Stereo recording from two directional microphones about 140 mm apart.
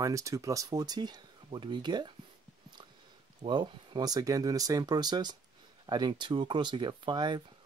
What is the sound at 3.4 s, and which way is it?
Speech, 35° right (ahead or behind).